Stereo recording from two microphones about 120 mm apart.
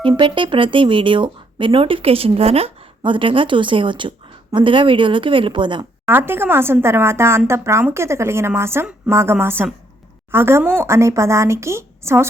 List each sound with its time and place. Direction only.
0.2 s speech: 45° right (ahead or behind)
6.1 s a woman's voice: 20° right (ahead or behind)